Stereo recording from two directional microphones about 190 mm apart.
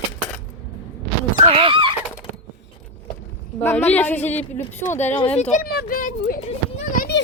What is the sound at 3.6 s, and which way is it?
A woman's voice, 10° left (ahead or behind).